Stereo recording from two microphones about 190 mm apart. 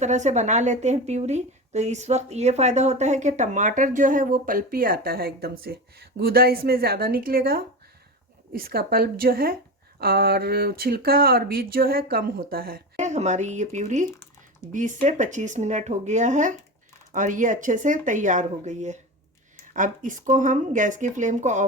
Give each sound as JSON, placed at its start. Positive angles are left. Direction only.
{"t": 0.0, "sound": "a woman's voice", "side_deg": -40}